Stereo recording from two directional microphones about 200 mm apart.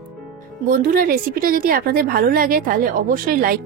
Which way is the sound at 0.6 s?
45° right (ahead or behind).